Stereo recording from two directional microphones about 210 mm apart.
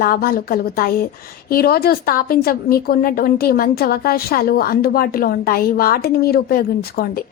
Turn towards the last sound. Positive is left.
turn(degrees=45)  # may be behind; listen again after turning